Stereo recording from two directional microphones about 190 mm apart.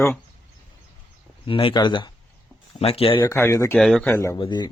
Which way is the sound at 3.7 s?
5° left (ahead or behind).